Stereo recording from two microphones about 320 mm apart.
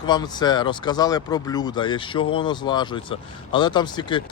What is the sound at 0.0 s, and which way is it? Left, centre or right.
Speech, centre.